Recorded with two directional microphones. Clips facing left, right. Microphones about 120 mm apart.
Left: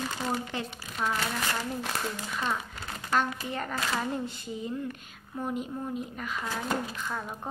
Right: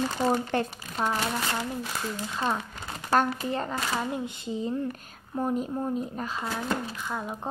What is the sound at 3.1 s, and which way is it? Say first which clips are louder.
Speech: right 4 dB; 40° right (ahead or behind).